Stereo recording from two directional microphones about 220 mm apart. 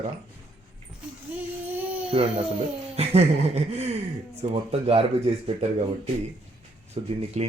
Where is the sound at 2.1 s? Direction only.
25° right (ahead or behind).